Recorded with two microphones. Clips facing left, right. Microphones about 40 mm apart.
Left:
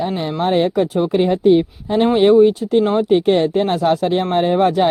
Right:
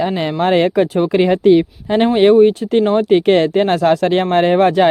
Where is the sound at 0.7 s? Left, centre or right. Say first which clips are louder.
Right 2 dB; right.